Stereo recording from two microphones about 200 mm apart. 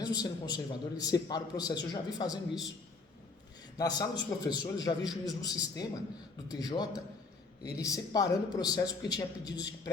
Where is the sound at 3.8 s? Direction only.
20° left (ahead or behind).